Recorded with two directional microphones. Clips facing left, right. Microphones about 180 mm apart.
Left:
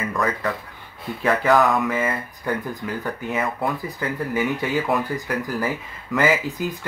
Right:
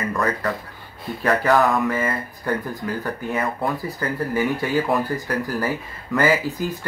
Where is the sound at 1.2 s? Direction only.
10° left (ahead or behind).